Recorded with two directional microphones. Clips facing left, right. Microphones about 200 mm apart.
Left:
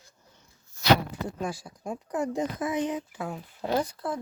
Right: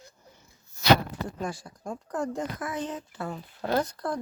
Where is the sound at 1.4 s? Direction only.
Centre (ahead or behind).